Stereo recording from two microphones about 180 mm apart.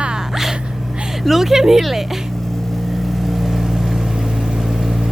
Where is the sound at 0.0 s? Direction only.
5° right (ahead or behind).